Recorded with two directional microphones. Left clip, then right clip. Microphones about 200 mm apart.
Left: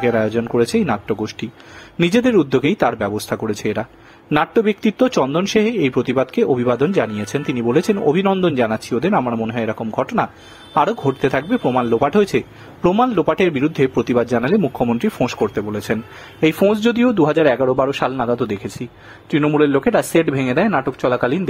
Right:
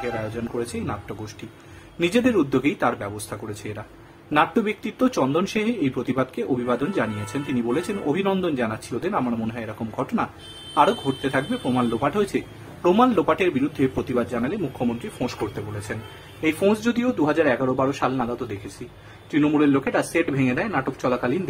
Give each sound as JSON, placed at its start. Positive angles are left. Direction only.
{"t": 0.0, "sound": "speech", "side_deg": 40}